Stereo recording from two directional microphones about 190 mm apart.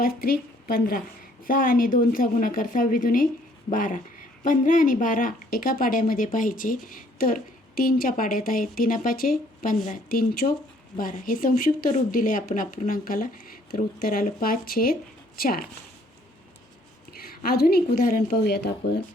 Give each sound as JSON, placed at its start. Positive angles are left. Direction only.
{"t": 0.0, "sound": "speech", "side_deg": 50}
{"t": 17.1, "sound": "a woman's voice", "side_deg": 50}